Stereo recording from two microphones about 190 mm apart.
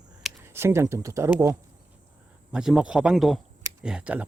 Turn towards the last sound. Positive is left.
turn(degrees=-5)  # may be behind; listen again after turning